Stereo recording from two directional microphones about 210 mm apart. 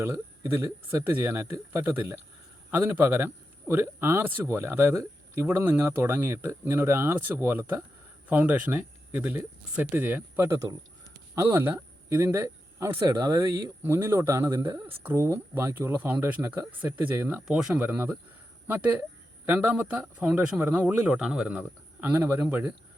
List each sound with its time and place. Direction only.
0.0 s speech: 10° right (ahead or behind)